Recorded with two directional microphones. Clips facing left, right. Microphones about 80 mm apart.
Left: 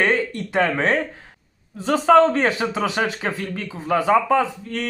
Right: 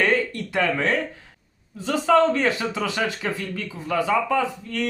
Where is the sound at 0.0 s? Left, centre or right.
Left.